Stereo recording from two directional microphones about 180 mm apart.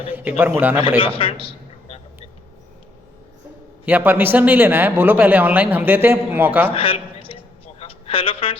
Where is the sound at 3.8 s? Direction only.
10° right (ahead or behind).